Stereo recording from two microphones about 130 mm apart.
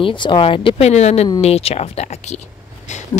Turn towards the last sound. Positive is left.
turn(degrees=65)  # may be behind; listen again after turning